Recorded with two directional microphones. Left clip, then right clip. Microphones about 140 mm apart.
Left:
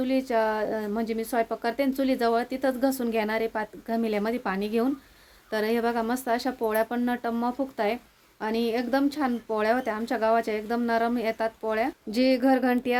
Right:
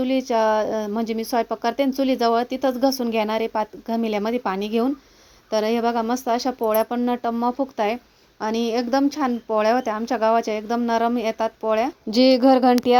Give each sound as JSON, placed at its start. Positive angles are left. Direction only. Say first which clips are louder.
{"t": 0.0, "sound": "a woman's voice", "louder": "right 5 dB", "side_deg": -40}